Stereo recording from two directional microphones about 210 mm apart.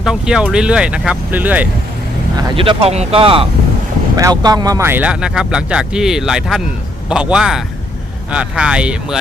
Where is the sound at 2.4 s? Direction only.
25° right (ahead or behind).